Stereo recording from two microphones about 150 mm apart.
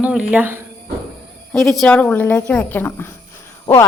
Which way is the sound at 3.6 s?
25° left (ahead or behind).